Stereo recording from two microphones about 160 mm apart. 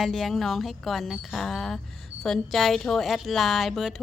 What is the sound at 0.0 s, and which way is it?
A woman's voice, centre (ahead or behind).